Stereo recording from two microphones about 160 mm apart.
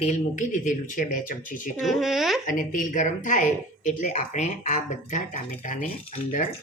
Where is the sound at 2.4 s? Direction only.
55° left (ahead or behind).